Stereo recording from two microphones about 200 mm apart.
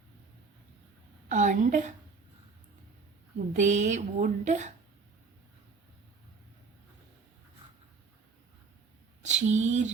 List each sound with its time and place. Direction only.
1.3 s a woman's voice: 35° right (ahead or behind)
3.5 s a woman's voice: 35° right (ahead or behind)
9.2 s speech: 35° right (ahead or behind)